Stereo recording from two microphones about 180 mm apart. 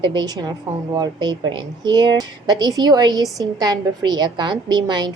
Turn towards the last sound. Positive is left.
turn(degrees=-25)  # may be behind; listen again after turning